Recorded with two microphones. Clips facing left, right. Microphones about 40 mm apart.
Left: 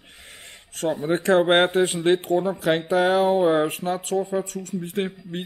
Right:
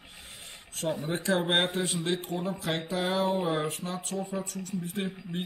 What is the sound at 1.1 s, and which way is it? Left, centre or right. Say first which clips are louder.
Speech: left 10 dB; left.